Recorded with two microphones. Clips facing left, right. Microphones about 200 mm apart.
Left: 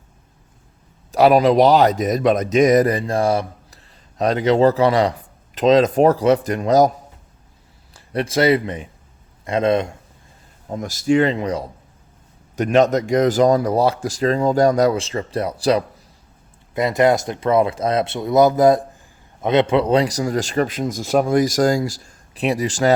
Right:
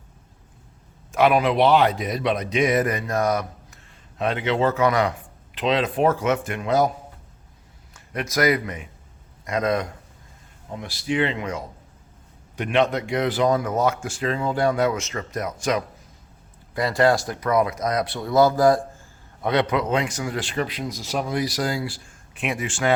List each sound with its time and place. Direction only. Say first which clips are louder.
1.1 s speech: left 6 dB; 35° left (ahead or behind)
7.9 s a man's voice: left 5 dB; 30° left (ahead or behind)
10.7 s speech: left 9 dB; 45° left (ahead or behind)
16.7 s a man's voice: left 3 dB; 20° left (ahead or behind); by 22.9 s 35° left (ahead or behind)